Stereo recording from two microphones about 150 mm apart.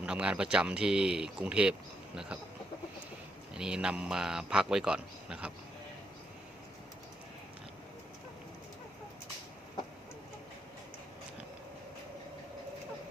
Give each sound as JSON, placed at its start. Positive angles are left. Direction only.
{"t": 0.0, "sound": "speech", "side_deg": -5}
{"t": 3.5, "sound": "a man's voice", "side_deg": -5}